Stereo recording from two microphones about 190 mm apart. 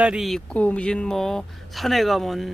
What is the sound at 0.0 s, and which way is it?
Speech, 5° right (ahead or behind).